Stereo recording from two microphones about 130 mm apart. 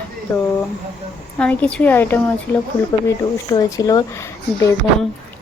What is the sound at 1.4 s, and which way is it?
A woman's voice, 10° left (ahead or behind).